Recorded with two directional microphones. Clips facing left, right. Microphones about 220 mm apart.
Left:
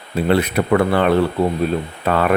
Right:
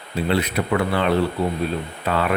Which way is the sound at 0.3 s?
50° left (ahead or behind).